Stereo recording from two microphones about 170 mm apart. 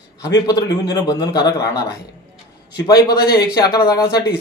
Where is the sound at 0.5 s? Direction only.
20° left (ahead or behind).